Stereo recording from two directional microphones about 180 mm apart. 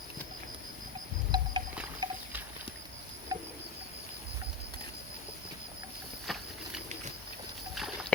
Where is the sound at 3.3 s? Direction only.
20° right (ahead or behind).